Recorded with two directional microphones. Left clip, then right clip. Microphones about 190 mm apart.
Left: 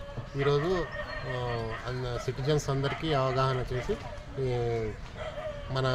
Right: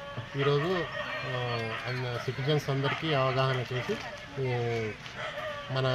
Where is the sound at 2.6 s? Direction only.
10° left (ahead or behind).